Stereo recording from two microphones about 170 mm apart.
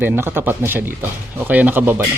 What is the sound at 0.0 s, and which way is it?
Speech, 15° right (ahead or behind).